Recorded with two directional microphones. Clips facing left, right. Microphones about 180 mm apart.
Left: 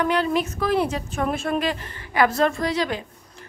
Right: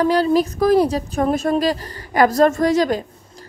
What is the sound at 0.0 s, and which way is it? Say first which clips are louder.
A woman's voice: right 6 dB; 35° right (ahead or behind).